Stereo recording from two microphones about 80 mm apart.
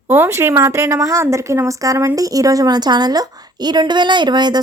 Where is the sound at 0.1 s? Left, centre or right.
Right.